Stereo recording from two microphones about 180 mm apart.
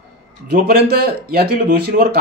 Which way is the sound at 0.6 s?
60° right (ahead or behind).